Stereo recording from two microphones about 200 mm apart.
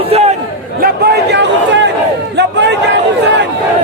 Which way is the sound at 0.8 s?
55° right (ahead or behind).